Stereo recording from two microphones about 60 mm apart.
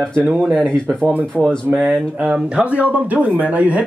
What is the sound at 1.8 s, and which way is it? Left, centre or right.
Speech, right.